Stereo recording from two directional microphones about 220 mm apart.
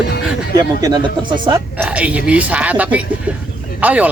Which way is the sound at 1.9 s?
5° right (ahead or behind).